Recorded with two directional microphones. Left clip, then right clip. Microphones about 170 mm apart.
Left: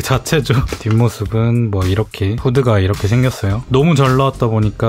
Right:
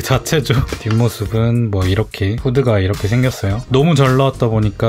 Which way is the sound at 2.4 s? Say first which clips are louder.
Left 1 dB; 25° left (ahead or behind).